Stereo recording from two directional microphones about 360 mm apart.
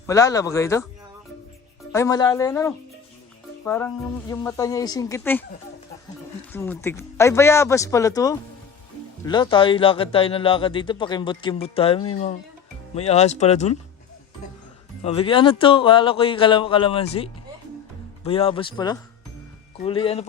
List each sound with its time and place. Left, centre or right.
0.1 s speech: centre
1.9 s speech: centre
6.5 s speech: centre
15.0 s speech: centre
18.3 s speech: centre